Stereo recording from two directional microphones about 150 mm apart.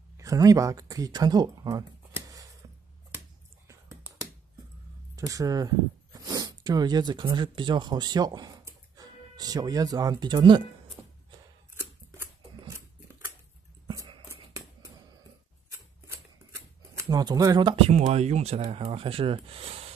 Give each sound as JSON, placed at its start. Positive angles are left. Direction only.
{"t": 0.2, "sound": "speech", "side_deg": -20}
{"t": 2.1, "sound": "a sound", "side_deg": -25}
{"t": 3.6, "sound": "a sound", "side_deg": -20}
{"t": 5.1, "sound": "speech", "side_deg": -20}
{"t": 6.1, "sound": "zipper", "side_deg": -25}
{"t": 7.3, "sound": "speech", "side_deg": -30}
{"t": 11.7, "sound": "scissors", "side_deg": -20}
{"t": 16.9, "sound": "speech", "side_deg": -25}